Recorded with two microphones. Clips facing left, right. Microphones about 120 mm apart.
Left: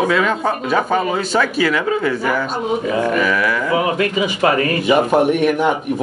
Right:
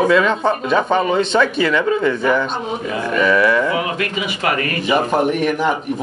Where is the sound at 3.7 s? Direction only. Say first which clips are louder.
Left 4 dB; 30° left (ahead or behind).